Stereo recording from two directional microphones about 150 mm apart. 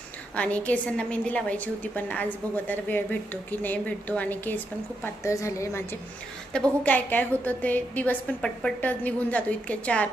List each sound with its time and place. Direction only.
0.3 s a woman's voice: 10° left (ahead or behind)